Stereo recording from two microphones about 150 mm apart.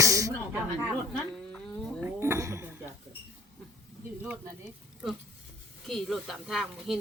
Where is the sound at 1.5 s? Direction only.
5° left (ahead or behind).